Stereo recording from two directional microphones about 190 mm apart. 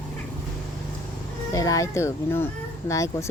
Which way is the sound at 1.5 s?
15° left (ahead or behind).